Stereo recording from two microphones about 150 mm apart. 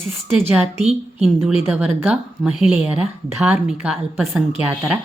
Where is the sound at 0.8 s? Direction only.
Centre (ahead or behind).